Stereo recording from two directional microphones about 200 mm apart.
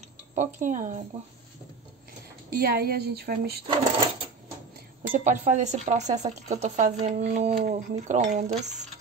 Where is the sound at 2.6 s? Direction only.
50° right (ahead or behind).